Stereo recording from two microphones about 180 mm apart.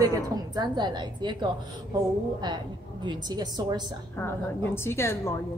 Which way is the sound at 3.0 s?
25° right (ahead or behind).